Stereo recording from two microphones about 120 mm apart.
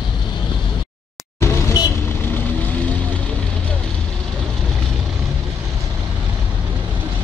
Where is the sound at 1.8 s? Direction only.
35° left (ahead or behind).